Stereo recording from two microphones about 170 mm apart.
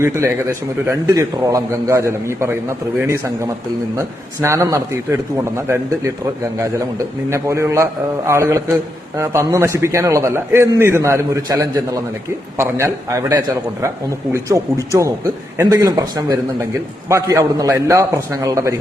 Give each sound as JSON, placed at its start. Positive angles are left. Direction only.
{"t": 0.0, "sound": "a man's voice", "side_deg": -15}
{"t": 7.3, "sound": "a man's voice", "side_deg": -15}